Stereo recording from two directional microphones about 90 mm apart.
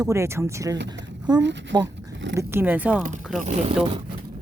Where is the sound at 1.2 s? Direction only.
50° right (ahead or behind).